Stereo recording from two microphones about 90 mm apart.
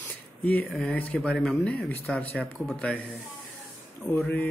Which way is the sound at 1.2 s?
5° left (ahead or behind).